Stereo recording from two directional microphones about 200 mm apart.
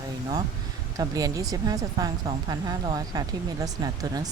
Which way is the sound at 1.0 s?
20° right (ahead or behind).